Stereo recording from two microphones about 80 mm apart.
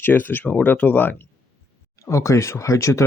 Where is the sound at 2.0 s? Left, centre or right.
Left.